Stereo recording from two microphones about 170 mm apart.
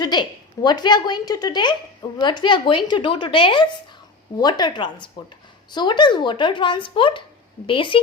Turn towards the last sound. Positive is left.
turn(degrees=30)  # may be behind; listen again after turning